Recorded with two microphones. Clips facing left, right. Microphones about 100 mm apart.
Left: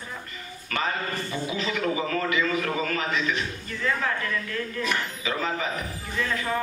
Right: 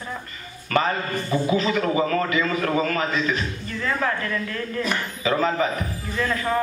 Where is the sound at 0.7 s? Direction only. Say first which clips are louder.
Right 6 dB; 40° right (ahead or behind).